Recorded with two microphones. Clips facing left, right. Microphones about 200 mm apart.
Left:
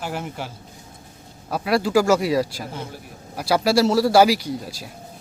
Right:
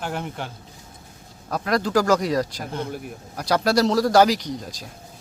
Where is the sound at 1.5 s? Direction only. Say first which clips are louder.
Left 2 dB; 5° left (ahead or behind).